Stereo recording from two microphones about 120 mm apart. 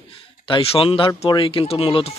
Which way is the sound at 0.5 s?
55° left (ahead or behind).